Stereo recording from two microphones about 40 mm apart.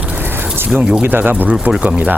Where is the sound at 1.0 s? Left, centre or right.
Right.